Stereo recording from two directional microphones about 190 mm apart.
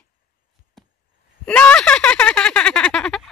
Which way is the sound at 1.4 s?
5° left (ahead or behind).